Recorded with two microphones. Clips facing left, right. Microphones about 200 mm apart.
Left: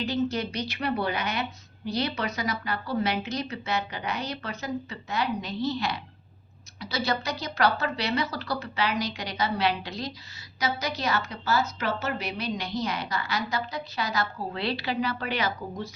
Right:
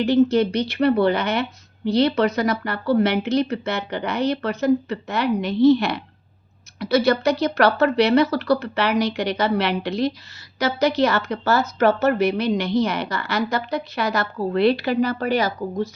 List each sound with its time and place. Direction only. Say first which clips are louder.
0.0 s a woman's voice: right 11 dB; 65° right (ahead or behind); by 15.9 s 40° right (ahead or behind)